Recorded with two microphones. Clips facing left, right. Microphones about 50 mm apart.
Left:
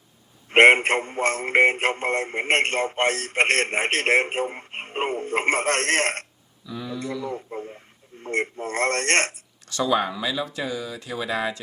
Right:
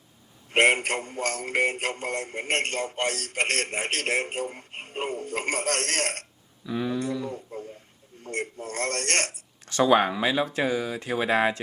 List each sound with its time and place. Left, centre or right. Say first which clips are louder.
0.5 s speech: left 7 dB; left
6.7 s speech: right 3 dB; right
7.3 s a sound: left 4 dB; left
8.2 s speech: left 6 dB; left
9.6 s speech: right 2 dB; right